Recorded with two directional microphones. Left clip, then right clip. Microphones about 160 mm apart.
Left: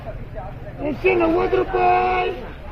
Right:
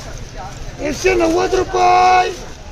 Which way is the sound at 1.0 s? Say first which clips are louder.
Right 3 dB; centre (ahead or behind).